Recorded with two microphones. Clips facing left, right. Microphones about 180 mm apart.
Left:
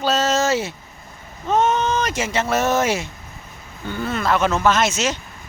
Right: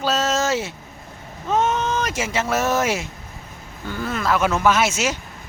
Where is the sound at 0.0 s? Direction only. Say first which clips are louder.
Left 2 dB; centre (ahead or behind).